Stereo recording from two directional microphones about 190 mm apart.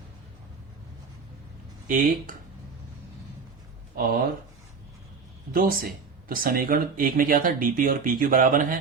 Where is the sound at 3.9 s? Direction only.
50° right (ahead or behind).